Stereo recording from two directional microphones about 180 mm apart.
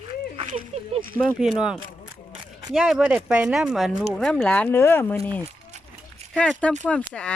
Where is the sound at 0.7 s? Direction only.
35° right (ahead or behind).